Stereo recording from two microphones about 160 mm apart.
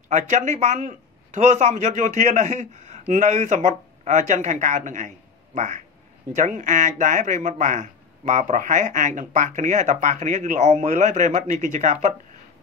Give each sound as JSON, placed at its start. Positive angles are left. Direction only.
{"t": 0.1, "sound": "speech", "side_deg": -50}